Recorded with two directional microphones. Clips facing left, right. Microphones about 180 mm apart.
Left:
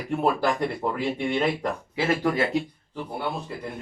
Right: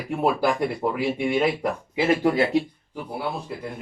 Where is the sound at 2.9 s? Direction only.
5° right (ahead or behind).